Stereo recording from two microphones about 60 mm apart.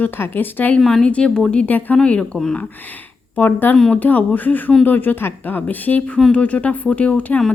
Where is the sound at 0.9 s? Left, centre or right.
Centre.